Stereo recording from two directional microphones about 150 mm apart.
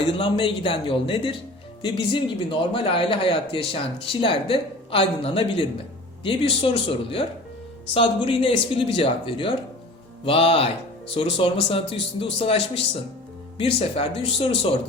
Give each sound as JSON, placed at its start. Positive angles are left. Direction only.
{"t": 0.1, "sound": "speech", "side_deg": 35}